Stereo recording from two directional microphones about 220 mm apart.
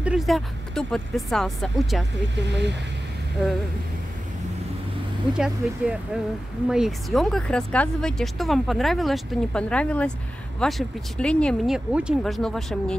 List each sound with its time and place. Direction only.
0.0 s speech: centre (ahead or behind)
2.4 s speech: 50° right (ahead or behind)
5.3 s speech: 5° right (ahead or behind)